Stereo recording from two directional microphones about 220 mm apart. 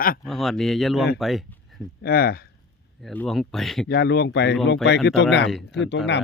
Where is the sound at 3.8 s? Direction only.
45° left (ahead or behind).